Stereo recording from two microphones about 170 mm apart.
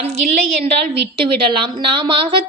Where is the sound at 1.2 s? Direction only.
30° right (ahead or behind).